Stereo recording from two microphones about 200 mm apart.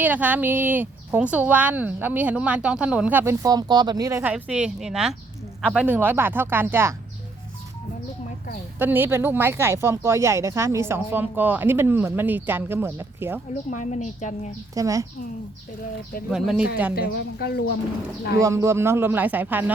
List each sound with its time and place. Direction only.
0.0 s a woman's voice: 10° right (ahead or behind)
8.8 s a woman's voice: 10° right (ahead or behind)
13.7 s a woman's voice: 35° left (ahead or behind)
14.8 s a woman's voice: 15° right (ahead or behind)
16.3 s speech: 5° right (ahead or behind)
16.9 s a woman's voice: 50° left (ahead or behind)
18.3 s a woman's voice: 15° right (ahead or behind)